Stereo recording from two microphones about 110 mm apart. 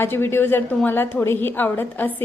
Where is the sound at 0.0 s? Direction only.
20° left (ahead or behind).